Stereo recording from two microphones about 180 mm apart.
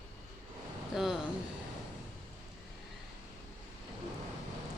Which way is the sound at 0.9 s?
Centre (ahead or behind).